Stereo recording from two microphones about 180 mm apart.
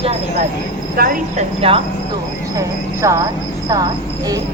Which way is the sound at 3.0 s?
15° right (ahead or behind).